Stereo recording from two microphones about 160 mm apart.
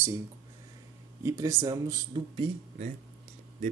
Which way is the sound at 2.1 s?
35° right (ahead or behind).